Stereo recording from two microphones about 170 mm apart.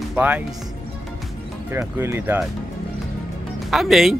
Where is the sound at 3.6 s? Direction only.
Centre (ahead or behind).